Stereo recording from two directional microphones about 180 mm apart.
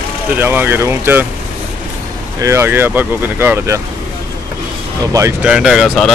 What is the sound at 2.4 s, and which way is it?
Speech, 15° right (ahead or behind).